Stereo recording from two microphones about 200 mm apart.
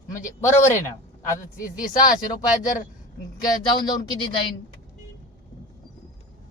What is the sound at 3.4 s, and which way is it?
Speech, 20° left (ahead or behind).